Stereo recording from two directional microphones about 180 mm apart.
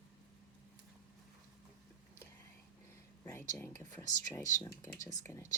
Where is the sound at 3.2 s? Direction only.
10° left (ahead or behind).